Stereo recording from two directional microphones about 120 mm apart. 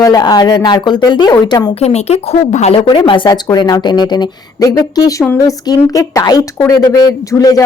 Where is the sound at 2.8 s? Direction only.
40° left (ahead or behind).